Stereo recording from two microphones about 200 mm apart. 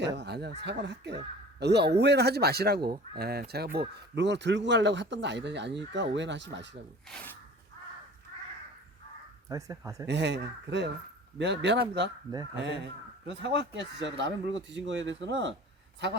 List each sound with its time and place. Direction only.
0.2 s speech: 55° right (ahead or behind)
2.8 s speech: 20° right (ahead or behind)
3.2 s speech: 50° right (ahead or behind)
7.1 s speech: 5° left (ahead or behind)
9.5 s speech: 15° right (ahead or behind)
10.1 s speech: 60° right (ahead or behind)